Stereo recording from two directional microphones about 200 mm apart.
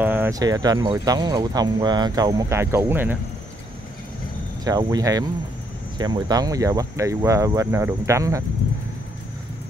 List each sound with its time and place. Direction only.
0.0 s speech: 10° right (ahead or behind)
4.6 s speech: 20° right (ahead or behind)